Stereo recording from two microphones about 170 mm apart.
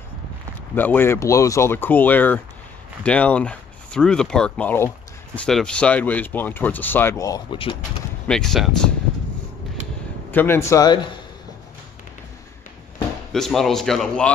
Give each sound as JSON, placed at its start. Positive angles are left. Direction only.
{"t": 0.7, "sound": "speech", "side_deg": 10}
{"t": 8.3, "sound": "a man's voice", "side_deg": 5}
{"t": 10.3, "sound": "speech", "side_deg": 10}
{"t": 13.3, "sound": "a man's voice", "side_deg": 0}